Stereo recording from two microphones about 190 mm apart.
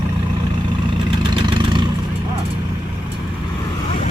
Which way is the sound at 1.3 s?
25° right (ahead or behind).